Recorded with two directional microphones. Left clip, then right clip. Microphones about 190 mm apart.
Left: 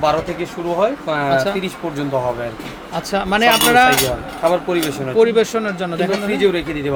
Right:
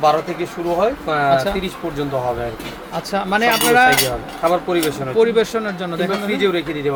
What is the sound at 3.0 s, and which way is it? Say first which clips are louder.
Speech: left 2 dB; 15° left (ahead or behind).